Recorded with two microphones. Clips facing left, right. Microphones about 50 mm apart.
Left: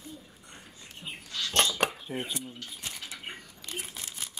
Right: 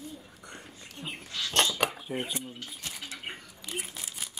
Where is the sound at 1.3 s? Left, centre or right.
Centre.